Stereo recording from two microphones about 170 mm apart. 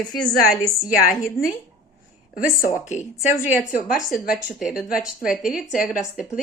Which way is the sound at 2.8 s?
45° left (ahead or behind).